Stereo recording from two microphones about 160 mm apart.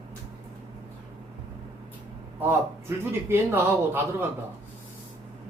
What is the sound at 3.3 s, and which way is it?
Speech, 15° right (ahead or behind).